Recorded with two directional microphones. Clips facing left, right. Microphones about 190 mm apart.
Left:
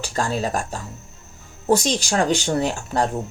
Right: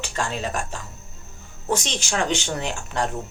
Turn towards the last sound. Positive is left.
turn(degrees=35)  # may be behind; listen again after turning